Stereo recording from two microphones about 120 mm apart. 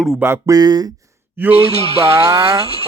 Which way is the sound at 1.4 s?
15° right (ahead or behind).